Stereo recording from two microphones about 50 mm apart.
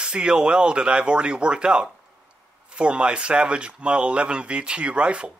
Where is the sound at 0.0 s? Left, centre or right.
Centre.